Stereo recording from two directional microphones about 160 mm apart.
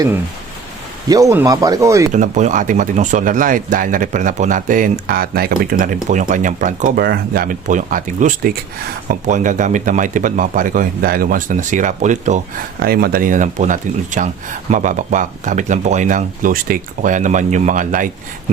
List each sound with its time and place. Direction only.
1.0 s speech: 20° right (ahead or behind)
2.1 s speech: 50° right (ahead or behind)
12.8 s speech: 70° right (ahead or behind)